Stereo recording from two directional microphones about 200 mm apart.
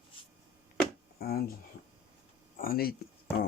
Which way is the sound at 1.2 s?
50° left (ahead or behind).